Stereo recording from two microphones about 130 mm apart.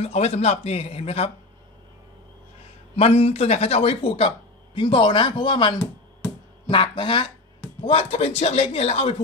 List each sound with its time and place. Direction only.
0.0 s a man's voice: 50° left (ahead or behind)
3.0 s a man's voice: 50° left (ahead or behind)